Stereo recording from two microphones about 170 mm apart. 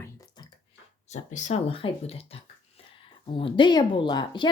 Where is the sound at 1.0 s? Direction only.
45° left (ahead or behind).